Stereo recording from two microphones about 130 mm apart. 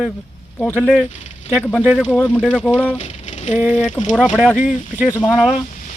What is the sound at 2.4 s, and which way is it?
Speech, 10° right (ahead or behind).